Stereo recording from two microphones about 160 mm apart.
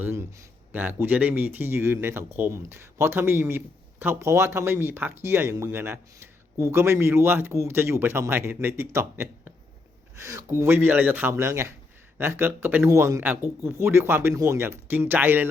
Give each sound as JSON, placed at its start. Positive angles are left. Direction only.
{"t": 0.0, "sound": "speech", "side_deg": -15}